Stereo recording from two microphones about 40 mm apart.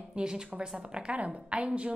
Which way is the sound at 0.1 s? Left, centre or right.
Centre.